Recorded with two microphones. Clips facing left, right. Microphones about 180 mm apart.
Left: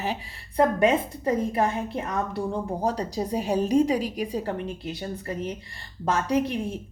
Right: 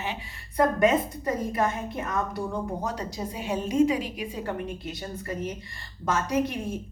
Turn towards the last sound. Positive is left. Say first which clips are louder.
# left 2 dB
turn(degrees=30)  # may be behind; listen again after turning